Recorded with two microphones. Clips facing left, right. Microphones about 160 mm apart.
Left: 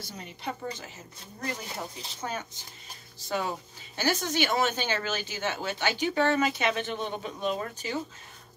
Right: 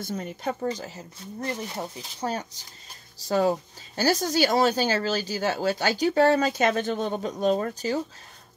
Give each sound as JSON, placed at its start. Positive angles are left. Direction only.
{"t": 0.0, "sound": "speech", "side_deg": -50}